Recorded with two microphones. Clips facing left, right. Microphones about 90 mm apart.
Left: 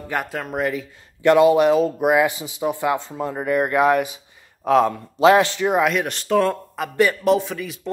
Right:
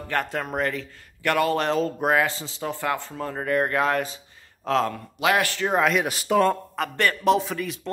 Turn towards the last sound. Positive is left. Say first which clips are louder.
# left 2 dB
turn(degrees=0)  # may be behind; listen again after turning